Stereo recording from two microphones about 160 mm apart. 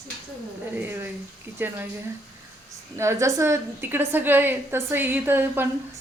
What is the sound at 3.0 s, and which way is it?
A woman's voice, 20° right (ahead or behind).